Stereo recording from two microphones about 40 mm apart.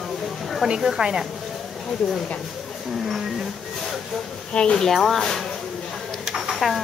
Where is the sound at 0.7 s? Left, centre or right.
Centre.